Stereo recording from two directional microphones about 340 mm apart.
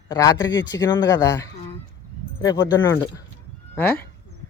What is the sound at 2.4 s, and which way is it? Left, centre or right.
Speech, centre.